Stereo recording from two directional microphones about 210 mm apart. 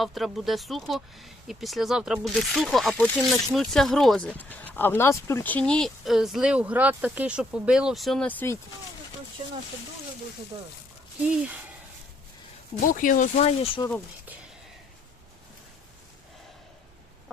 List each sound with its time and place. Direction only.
0.0 s speech: centre (ahead or behind)
11.3 s speech: 5° right (ahead or behind)
12.8 s speech: 40° left (ahead or behind)